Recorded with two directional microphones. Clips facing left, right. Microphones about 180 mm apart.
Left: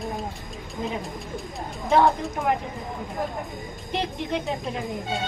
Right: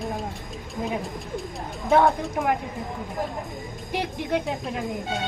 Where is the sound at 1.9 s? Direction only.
Centre (ahead or behind).